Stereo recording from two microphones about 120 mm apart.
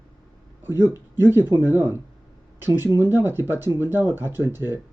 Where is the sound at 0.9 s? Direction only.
20° right (ahead or behind).